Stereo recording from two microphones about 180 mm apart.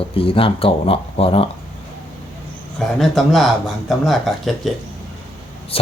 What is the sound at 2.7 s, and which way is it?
Speech, centre (ahead or behind).